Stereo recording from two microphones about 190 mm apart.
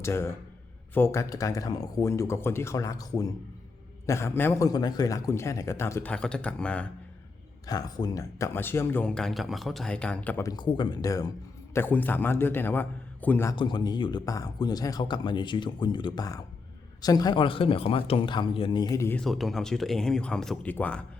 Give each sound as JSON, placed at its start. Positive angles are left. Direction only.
{"t": 0.0, "sound": "speech", "side_deg": 15}
{"t": 7.7, "sound": "speech", "side_deg": 20}
{"t": 13.6, "sound": "speech", "side_deg": 25}
{"t": 19.2, "sound": "speech", "side_deg": 0}